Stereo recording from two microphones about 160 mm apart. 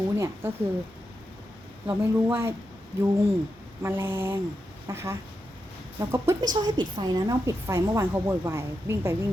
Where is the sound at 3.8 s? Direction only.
15° right (ahead or behind).